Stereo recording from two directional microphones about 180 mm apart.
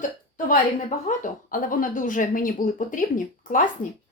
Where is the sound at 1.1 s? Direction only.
45° left (ahead or behind).